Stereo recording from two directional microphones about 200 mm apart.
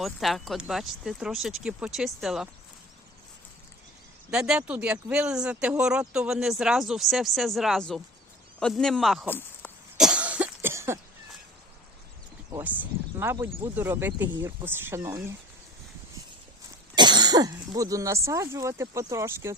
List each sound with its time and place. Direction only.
0.0 s speech: centre (ahead or behind)
4.3 s speech: 5° right (ahead or behind)
10.0 s cough: 5° right (ahead or behind)
12.5 s speech: 10° right (ahead or behind)
16.9 s speech: 20° right (ahead or behind)